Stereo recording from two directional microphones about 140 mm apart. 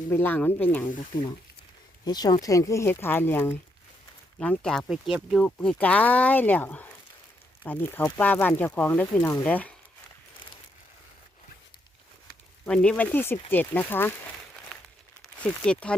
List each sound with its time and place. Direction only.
0.1 s speech: 15° left (ahead or behind)
2.0 s speech: 30° left (ahead or behind)
4.4 s speech: 5° left (ahead or behind)
5.5 s speech: 10° left (ahead or behind)
12.6 s speech: 5° left (ahead or behind)
15.6 s speech: 5° left (ahead or behind)